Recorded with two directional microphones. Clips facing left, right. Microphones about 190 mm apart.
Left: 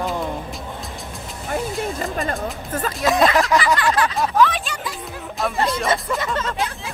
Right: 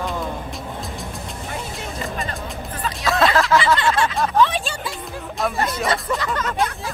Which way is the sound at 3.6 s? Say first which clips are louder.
Even; 25° right (ahead or behind).